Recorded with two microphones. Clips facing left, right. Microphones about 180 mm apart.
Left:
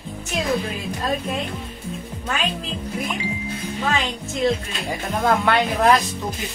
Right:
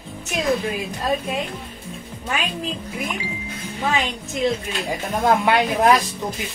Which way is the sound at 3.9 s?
15° right (ahead or behind).